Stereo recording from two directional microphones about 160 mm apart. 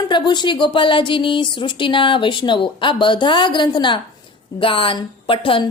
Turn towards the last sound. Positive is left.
turn(degrees=35)  # may be behind; listen again after turning